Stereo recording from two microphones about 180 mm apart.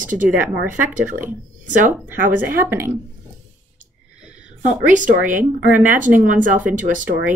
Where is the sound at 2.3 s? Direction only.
10° right (ahead or behind).